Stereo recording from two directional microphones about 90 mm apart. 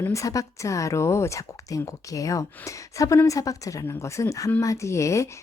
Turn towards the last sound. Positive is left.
turn(degrees=35)  # may be behind; listen again after turning